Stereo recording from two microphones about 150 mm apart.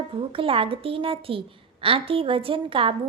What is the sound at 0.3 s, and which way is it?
A woman's voice, 35° right (ahead or behind).